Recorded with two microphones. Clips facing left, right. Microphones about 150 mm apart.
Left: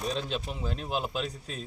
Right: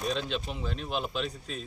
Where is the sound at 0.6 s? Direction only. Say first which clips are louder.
Left 3 dB; 40° left (ahead or behind).